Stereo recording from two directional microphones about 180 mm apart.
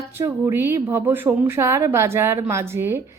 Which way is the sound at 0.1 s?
15° right (ahead or behind).